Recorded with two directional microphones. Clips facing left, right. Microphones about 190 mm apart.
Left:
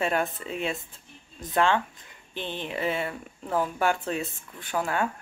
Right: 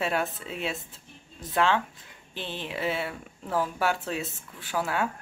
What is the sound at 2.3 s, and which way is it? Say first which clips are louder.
Speech: left 2 dB; 50° left (ahead or behind).